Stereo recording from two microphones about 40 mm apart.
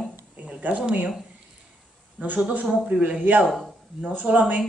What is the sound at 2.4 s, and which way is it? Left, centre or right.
Speech, right.